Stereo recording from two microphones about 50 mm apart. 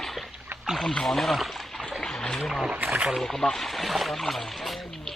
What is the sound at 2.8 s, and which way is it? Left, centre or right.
Speech, right.